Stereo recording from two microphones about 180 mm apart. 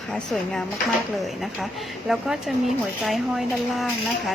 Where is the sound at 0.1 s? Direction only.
5° left (ahead or behind).